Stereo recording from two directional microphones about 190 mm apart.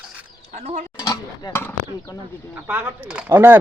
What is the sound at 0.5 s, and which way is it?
Speech, 35° right (ahead or behind).